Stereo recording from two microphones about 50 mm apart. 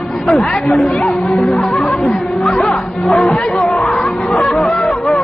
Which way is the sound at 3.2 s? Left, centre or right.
Centre.